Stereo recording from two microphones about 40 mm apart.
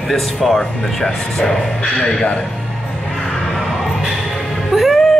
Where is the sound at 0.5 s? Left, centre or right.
Centre.